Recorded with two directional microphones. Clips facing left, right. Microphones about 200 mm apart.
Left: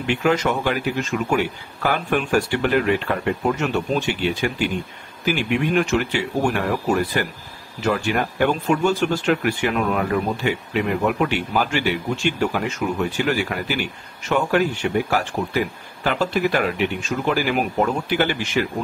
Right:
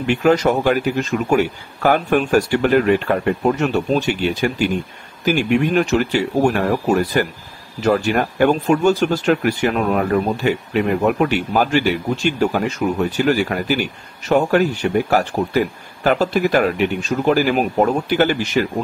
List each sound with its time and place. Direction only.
0.0 s speech: 40° right (ahead or behind)